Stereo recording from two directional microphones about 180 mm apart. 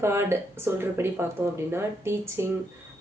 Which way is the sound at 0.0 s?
15° right (ahead or behind).